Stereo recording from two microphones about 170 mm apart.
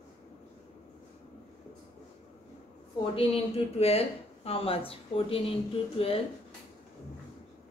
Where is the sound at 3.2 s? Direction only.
35° left (ahead or behind).